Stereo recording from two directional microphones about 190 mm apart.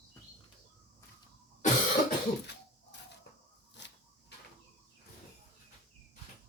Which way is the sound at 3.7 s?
65° left (ahead or behind).